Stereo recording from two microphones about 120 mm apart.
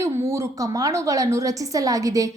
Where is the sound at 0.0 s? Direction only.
25° right (ahead or behind).